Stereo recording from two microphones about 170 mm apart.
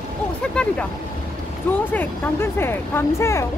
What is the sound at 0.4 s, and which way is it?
Vehicle, 5° left (ahead or behind).